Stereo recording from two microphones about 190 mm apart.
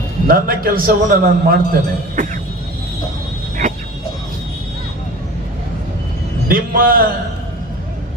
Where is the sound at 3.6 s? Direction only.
40° right (ahead or behind).